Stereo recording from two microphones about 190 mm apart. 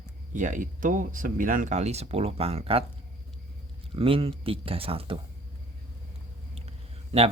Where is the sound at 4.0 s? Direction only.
30° right (ahead or behind).